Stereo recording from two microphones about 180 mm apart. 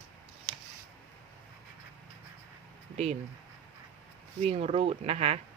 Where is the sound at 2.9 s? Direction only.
40° right (ahead or behind).